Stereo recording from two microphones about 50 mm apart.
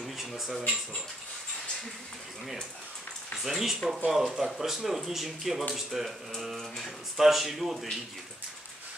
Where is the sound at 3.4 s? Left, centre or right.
Centre.